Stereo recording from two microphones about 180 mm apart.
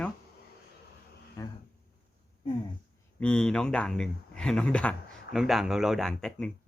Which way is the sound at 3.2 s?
5° left (ahead or behind).